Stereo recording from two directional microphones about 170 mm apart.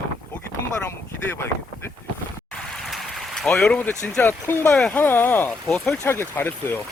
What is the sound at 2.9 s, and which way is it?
Speech, centre (ahead or behind).